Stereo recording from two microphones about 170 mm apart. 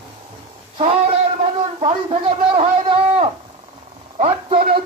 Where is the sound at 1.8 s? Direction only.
35° right (ahead or behind).